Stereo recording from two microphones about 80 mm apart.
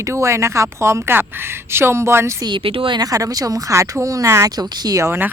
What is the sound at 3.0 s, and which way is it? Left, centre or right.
Speech, right.